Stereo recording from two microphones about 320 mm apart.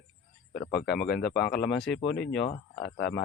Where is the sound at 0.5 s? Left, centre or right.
Left.